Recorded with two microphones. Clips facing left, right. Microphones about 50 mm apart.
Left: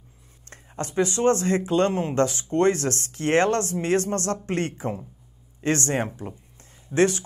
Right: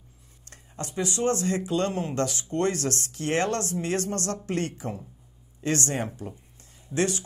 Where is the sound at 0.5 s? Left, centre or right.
Left.